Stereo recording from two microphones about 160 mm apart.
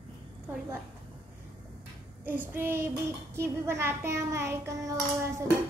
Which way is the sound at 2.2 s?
15° right (ahead or behind).